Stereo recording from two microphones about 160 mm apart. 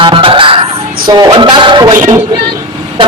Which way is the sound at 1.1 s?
25° right (ahead or behind).